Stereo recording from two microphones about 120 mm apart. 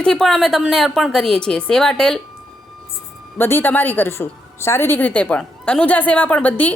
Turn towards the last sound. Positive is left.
turn(degrees=15)  # may be behind; listen again after turning